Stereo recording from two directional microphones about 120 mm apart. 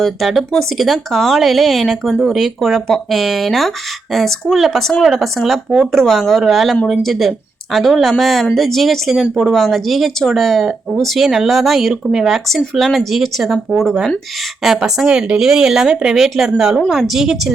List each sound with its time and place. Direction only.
0.0 s speech: centre (ahead or behind)